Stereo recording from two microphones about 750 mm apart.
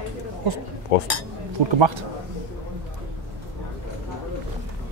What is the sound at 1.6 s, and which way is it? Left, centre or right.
Speech, right.